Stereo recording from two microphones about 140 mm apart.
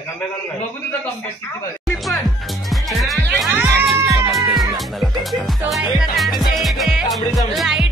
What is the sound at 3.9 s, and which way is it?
Music, 20° right (ahead or behind).